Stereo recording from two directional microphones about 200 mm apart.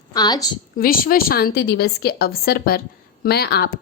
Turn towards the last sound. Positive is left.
turn(degrees=50)  # may be behind; listen again after turning